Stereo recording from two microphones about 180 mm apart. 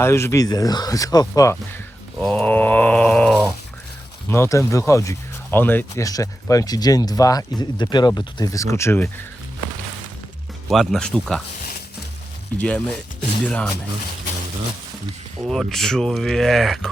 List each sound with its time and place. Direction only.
0.0 s speech: 15° left (ahead or behind)
2.2 s groan: 5° left (ahead or behind)
4.3 s speech: 15° left (ahead or behind)
10.7 s speech: centre (ahead or behind)
12.5 s speech: 5° left (ahead or behind)
15.4 s speech: centre (ahead or behind)